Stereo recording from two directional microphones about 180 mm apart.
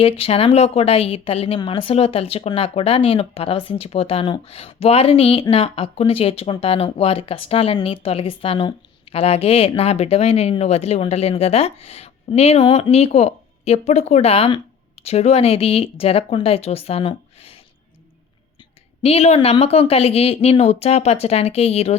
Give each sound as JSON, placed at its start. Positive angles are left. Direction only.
{"t": 0.0, "sound": "a woman's voice", "side_deg": 30}
{"t": 19.0, "sound": "a woman's voice", "side_deg": 35}